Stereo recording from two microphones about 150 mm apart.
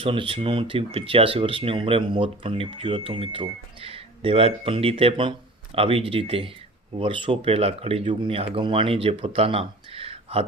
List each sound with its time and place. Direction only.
0.0 s speech: 35° right (ahead or behind)